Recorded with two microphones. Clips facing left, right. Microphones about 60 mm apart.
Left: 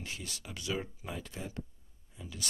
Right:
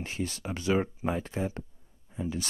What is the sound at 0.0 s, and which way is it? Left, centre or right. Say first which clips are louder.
Speech: right 9 dB; right.